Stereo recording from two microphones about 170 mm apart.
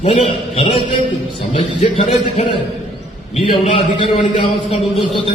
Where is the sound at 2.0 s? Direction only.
30° left (ahead or behind).